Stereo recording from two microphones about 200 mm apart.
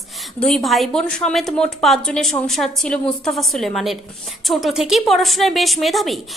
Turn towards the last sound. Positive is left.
turn(degrees=0)  # may be behind; listen again after turning